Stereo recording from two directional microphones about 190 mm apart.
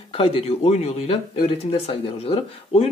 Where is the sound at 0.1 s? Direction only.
30° left (ahead or behind).